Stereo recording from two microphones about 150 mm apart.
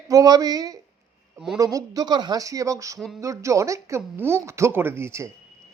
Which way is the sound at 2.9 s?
Centre (ahead or behind).